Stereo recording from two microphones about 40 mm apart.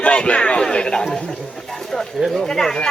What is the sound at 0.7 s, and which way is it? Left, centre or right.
Speech, left.